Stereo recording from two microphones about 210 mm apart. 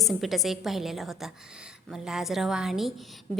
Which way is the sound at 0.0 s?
Centre (ahead or behind).